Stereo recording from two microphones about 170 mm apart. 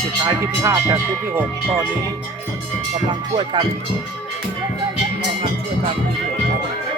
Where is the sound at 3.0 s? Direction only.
25° right (ahead or behind).